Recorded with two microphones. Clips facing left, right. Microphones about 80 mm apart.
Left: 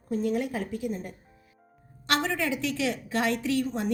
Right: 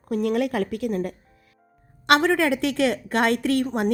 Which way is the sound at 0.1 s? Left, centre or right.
Right.